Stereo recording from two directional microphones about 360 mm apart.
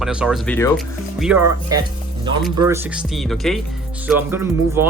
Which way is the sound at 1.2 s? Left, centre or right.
Centre.